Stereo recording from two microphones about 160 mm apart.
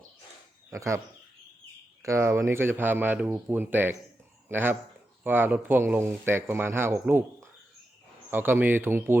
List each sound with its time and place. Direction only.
0.7 s speech: 20° right (ahead or behind)
8.3 s speech: 10° right (ahead or behind)